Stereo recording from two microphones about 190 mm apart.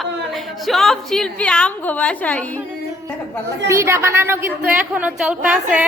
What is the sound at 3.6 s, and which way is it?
A woman's voice, 15° right (ahead or behind).